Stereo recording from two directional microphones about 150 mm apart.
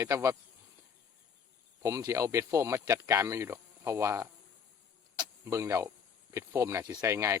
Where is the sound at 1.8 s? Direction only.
20° right (ahead or behind).